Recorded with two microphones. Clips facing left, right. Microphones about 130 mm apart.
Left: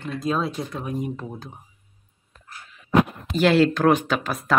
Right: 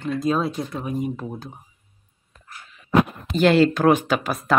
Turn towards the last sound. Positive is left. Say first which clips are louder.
# right 2 dB
turn(degrees=-5)  # may be behind; listen again after turning